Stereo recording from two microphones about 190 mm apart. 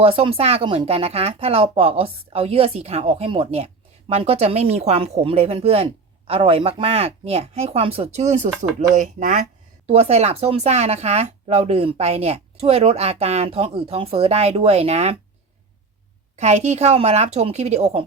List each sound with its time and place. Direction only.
0.0 s speech: 30° right (ahead or behind)
16.3 s speech: 35° right (ahead or behind)